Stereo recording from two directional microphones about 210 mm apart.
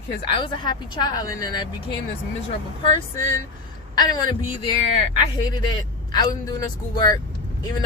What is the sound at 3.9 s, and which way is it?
Speech, 20° left (ahead or behind).